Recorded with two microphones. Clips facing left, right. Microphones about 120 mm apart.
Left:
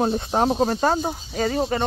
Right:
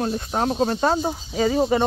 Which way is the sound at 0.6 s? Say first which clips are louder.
Even; 5° left (ahead or behind).